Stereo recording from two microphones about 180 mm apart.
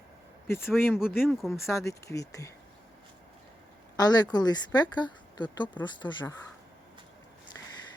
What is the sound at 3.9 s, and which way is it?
A woman's voice, 20° left (ahead or behind).